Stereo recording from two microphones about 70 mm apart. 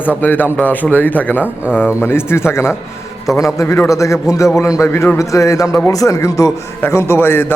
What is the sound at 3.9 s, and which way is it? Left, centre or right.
Speech, left.